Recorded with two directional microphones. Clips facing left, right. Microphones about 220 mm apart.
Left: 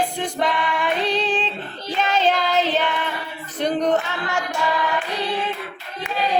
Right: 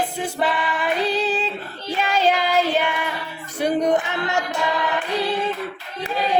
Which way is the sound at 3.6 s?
10° right (ahead or behind).